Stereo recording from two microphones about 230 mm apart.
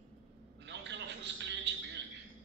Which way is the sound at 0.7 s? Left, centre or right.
Right.